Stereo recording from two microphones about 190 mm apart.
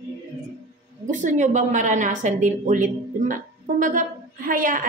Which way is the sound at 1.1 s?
40° right (ahead or behind).